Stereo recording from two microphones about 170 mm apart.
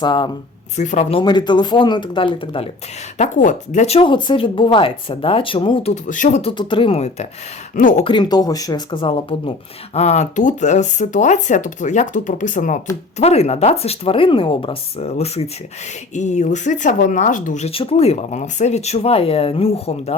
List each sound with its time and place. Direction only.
0.0 s speech: 25° left (ahead or behind)
0.8 s speech: 45° left (ahead or behind)
1.2 s speech: 25° left (ahead or behind)
3.2 s speech: 50° left (ahead or behind); by 5.9 s 30° left (ahead or behind)
5.9 s speech: 50° left (ahead or behind)
6.5 s speech: 30° left (ahead or behind)
7.8 s speech: 50° left (ahead or behind)
8.0 s speech: 25° left (ahead or behind)
9.9 s speech: 40° left (ahead or behind)